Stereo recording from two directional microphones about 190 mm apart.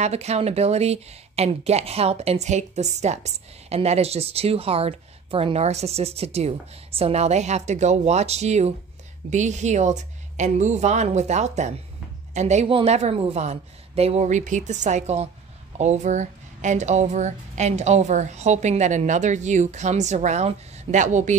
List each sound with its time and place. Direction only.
0.0 s speech: 35° right (ahead or behind)